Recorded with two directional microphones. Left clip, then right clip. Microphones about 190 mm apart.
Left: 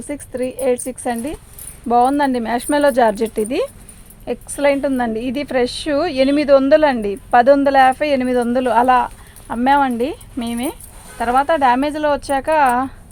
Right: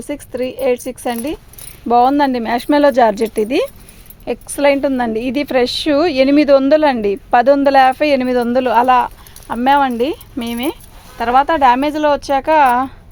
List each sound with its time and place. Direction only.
0.0 s a woman's voice: 50° right (ahead or behind)